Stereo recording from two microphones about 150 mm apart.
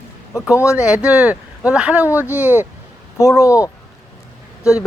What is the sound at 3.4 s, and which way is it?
Speech, 20° left (ahead or behind).